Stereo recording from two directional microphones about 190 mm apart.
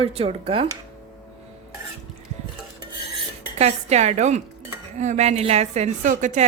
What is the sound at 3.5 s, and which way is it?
A woman's voice, 35° right (ahead or behind).